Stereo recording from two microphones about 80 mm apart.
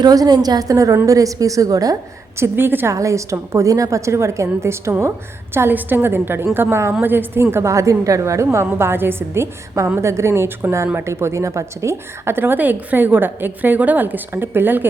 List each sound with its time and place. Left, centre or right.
0.0 s a woman's voice: right
2.4 s a woman's voice: right
2.9 s a woman's voice: right
7.5 s a woman's voice: right